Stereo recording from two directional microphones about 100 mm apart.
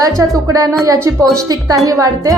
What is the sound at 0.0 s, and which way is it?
Speech, 35° right (ahead or behind).